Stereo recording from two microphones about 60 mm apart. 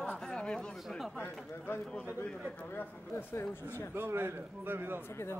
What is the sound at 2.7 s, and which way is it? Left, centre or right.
Speech, left.